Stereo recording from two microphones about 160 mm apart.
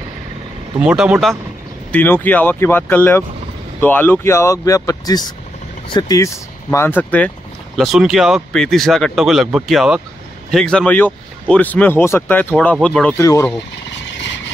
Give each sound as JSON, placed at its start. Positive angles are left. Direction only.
{"t": 0.7, "sound": "speech", "side_deg": -5}
{"t": 1.9, "sound": "speech", "side_deg": 10}
{"t": 7.7, "sound": "speech", "side_deg": 0}
{"t": 13.2, "sound": "speech", "side_deg": 20}